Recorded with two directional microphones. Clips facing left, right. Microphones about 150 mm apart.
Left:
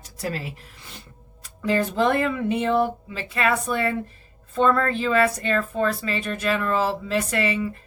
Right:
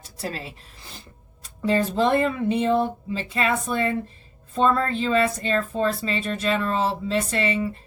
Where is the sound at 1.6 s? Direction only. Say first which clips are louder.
Right 1 dB; 30° right (ahead or behind).